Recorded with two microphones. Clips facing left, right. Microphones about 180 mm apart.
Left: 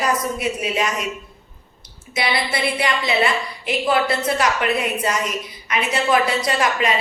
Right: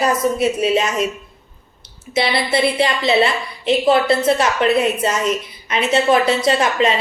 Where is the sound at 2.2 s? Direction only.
25° right (ahead or behind).